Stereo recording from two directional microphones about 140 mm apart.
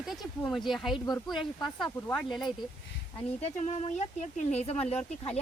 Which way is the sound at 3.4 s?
55° left (ahead or behind).